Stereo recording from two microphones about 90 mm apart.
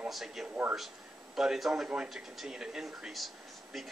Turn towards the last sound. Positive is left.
turn(degrees=0)  # may be behind; listen again after turning